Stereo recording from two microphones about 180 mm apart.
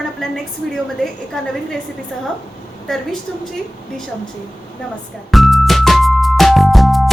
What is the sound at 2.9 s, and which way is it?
Speech, centre (ahead or behind).